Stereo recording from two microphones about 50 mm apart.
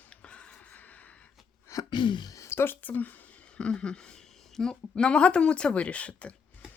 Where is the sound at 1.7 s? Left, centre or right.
Left.